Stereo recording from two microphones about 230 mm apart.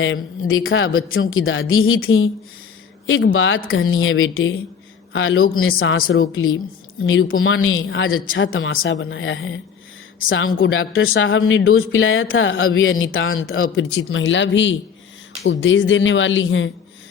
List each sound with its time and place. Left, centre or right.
0.0 s speech: left
3.3 s speech: left